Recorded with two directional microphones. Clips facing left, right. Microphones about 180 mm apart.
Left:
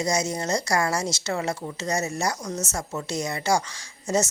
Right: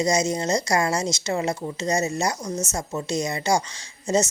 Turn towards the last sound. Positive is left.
turn(degrees=-20)  # may be behind; listen again after turning